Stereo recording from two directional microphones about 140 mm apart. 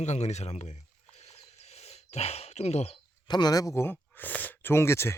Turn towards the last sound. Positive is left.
turn(degrees=20)  # may be behind; listen again after turning